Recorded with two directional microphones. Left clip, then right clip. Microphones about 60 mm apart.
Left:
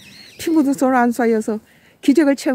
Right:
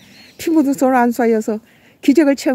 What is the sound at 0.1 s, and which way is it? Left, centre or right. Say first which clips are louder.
A woman's voice: right 2 dB; right.